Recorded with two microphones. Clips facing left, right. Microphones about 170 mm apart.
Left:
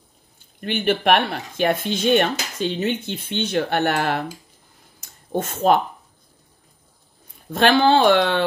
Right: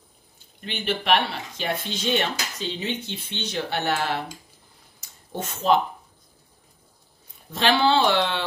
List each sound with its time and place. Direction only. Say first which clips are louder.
0.6 s speech: left 7 dB; 55° left (ahead or behind)
5.3 s speech: left 4 dB; 50° left (ahead or behind)
7.5 s speech: left 5 dB; 50° left (ahead or behind)